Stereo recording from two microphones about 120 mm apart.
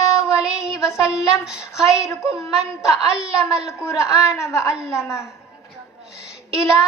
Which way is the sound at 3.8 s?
25° left (ahead or behind).